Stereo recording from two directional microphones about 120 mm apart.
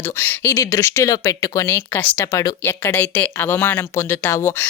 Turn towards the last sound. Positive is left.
turn(degrees=20)  # may be behind; listen again after turning